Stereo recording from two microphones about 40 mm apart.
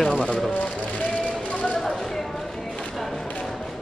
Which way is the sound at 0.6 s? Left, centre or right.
Left.